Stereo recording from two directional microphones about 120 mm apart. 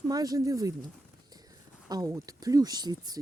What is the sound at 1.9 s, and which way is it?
Speech, 30° right (ahead or behind).